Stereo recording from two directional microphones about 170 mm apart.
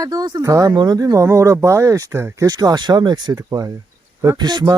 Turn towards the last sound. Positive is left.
turn(degrees=-25)  # may be behind; listen again after turning